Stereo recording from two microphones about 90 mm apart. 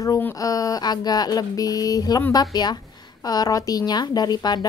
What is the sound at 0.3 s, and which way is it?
Speech, 40° left (ahead or behind).